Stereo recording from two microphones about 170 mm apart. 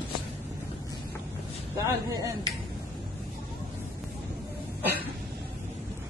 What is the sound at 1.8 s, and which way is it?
Speech, 20° right (ahead or behind).